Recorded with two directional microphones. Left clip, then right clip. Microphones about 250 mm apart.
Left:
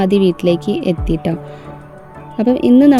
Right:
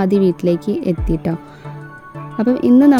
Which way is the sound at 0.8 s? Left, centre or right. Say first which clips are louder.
Left 2 dB; centre.